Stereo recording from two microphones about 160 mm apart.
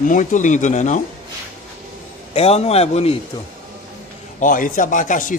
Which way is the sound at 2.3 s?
40° left (ahead or behind).